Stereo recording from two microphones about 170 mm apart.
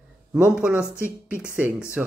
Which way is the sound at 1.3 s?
10° right (ahead or behind).